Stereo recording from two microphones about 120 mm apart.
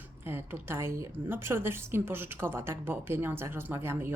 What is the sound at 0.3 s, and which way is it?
A woman's voice, 20° right (ahead or behind).